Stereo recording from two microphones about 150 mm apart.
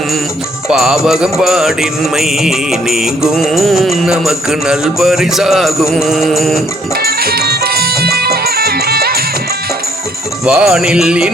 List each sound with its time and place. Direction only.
0.7 s music: 5° right (ahead or behind)
7.0 s music: 90° right
10.4 s music: 5° right (ahead or behind)